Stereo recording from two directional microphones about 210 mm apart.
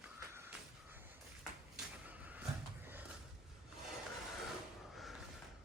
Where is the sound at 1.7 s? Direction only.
5° right (ahead or behind).